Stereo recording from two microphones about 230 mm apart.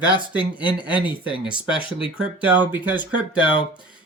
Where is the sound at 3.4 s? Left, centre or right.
Left.